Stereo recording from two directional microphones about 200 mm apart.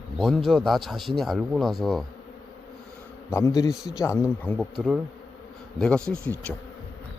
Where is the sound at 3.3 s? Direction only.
15° left (ahead or behind).